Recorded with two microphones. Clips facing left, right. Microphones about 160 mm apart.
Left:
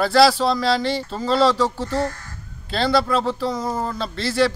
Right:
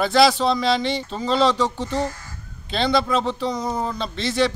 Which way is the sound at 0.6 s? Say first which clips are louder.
Left 1 dB; 20° right (ahead or behind).